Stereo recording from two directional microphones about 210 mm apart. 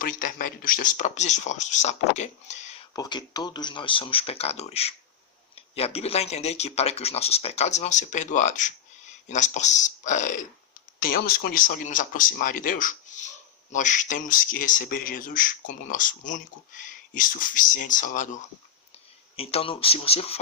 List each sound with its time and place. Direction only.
0.0 s speech: 40° left (ahead or behind)
2.9 s speech: 20° left (ahead or behind); by 18.3 s 40° left (ahead or behind)
19.4 s speech: 30° left (ahead or behind)